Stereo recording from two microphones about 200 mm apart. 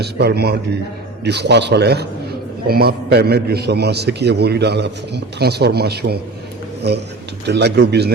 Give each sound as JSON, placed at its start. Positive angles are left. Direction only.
{"t": 0.0, "sound": "a man's voice", "side_deg": -55}
{"t": 7.4, "sound": "a man's voice", "side_deg": -55}